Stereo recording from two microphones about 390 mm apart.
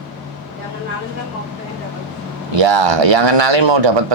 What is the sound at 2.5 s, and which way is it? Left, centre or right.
A man's voice, right.